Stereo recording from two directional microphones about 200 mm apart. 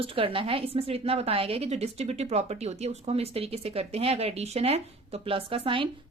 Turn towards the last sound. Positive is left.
turn(degrees=-25)  # may be behind; listen again after turning